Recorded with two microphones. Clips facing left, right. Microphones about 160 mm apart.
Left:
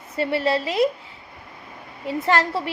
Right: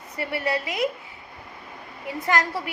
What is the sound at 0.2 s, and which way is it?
Speech, 25° left (ahead or behind).